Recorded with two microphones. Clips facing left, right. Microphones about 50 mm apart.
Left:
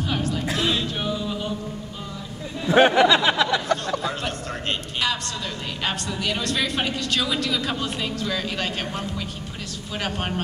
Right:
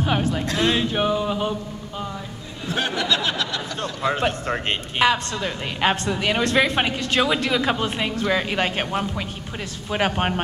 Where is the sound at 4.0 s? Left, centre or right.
Right.